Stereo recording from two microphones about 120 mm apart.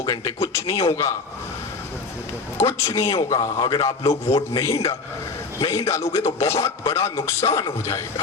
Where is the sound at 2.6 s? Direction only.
25° left (ahead or behind).